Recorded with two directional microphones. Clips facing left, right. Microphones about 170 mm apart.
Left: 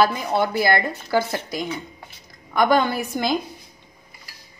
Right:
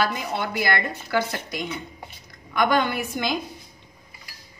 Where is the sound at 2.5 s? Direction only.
35° left (ahead or behind).